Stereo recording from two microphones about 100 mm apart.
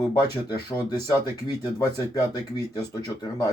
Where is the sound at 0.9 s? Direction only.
45° left (ahead or behind).